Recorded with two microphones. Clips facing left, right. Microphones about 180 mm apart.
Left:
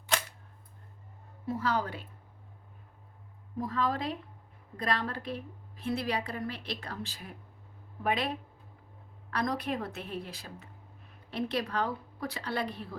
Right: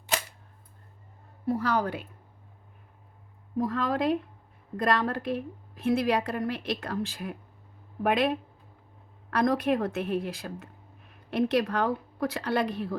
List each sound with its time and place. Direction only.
1.5 s a woman's voice: 65° right (ahead or behind)
3.6 s a woman's voice: 55° right (ahead or behind)
9.3 s a woman's voice: 50° right (ahead or behind)